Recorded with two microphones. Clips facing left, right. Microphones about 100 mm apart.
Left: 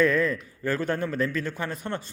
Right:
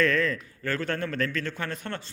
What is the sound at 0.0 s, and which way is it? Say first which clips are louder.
A man's voice: left 2 dB; 10° left (ahead or behind).